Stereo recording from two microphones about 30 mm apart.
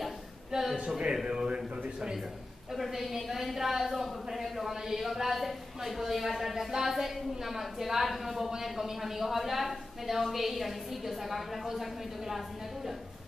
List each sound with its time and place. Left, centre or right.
0.7 s speech: right
1.2 s a man's voice: right
2.7 s a woman's voice: centre